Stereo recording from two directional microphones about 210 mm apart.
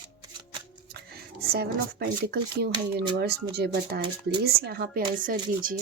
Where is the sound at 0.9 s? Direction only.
50° right (ahead or behind).